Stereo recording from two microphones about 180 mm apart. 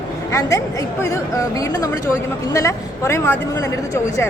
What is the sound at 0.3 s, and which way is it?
A woman's voice, 15° left (ahead or behind).